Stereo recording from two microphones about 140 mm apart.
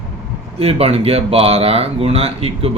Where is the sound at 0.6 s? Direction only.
45° right (ahead or behind).